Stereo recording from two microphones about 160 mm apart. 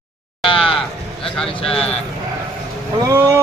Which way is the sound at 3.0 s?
15° right (ahead or behind).